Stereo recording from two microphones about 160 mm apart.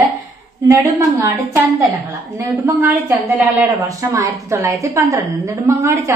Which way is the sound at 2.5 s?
10° right (ahead or behind).